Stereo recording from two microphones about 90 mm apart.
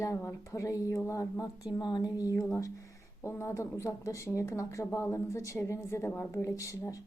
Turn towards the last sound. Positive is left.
turn(degrees=35)  # may be behind; listen again after turning